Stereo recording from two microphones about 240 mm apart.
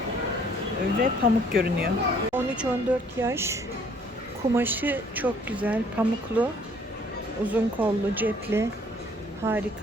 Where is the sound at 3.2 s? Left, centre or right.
Centre.